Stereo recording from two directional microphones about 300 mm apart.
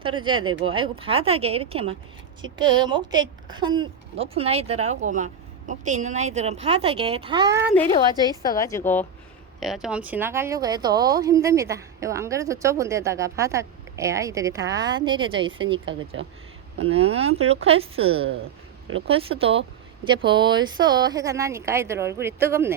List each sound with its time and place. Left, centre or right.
0.0 s a woman's voice: centre
8.4 s a woman's voice: centre
16.2 s speech: right
16.9 s a woman's voice: centre